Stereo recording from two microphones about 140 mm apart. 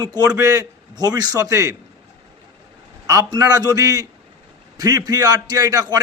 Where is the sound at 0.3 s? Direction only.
20° right (ahead or behind).